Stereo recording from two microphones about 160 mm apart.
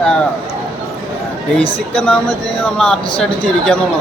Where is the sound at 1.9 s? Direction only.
5° left (ahead or behind).